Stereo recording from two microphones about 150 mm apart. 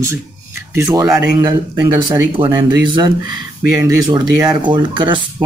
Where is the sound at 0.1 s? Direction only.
20° right (ahead or behind).